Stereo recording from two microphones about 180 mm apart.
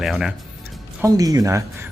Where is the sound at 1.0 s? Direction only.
20° right (ahead or behind).